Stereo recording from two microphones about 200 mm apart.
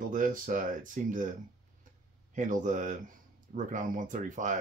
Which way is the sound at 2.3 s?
40° right (ahead or behind).